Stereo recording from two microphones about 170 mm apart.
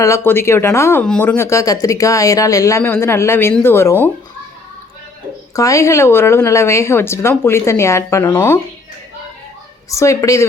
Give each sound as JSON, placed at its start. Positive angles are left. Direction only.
{"t": 0.0, "sound": "speech", "side_deg": 15}
{"t": 5.5, "sound": "speech", "side_deg": 20}
{"t": 9.9, "sound": "speech", "side_deg": 20}